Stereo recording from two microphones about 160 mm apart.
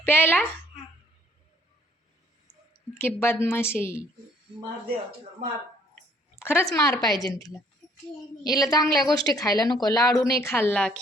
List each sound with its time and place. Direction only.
0.0 s a woman's voice: 10° left (ahead or behind)
3.0 s a woman's voice: 15° left (ahead or behind)
6.4 s a woman's voice: 15° left (ahead or behind)